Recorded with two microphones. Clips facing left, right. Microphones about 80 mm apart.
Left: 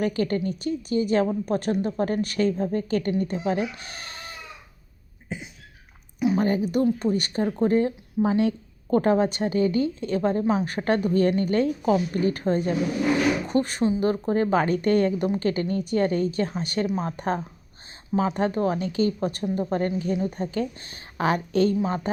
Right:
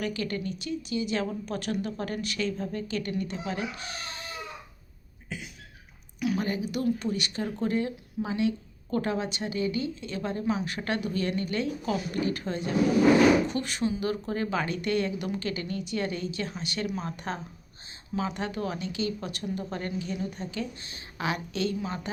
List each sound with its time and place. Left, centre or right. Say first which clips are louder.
0.0 s a woman's voice: left 7 dB; left
5.3 s a woman's voice: left 4 dB; left